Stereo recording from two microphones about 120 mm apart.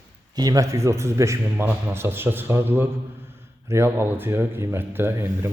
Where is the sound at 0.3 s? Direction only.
30° right (ahead or behind).